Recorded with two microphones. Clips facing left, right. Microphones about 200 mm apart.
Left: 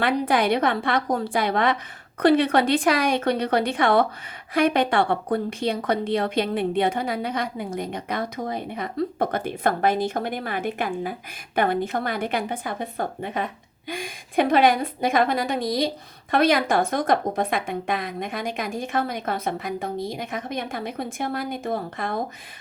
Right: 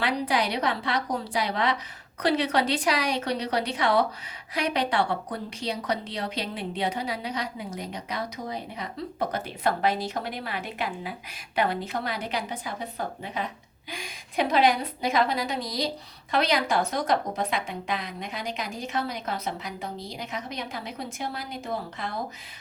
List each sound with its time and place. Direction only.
0.0 s speech: 55° left (ahead or behind)